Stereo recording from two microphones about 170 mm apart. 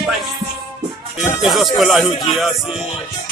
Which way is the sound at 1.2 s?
Centre (ahead or behind).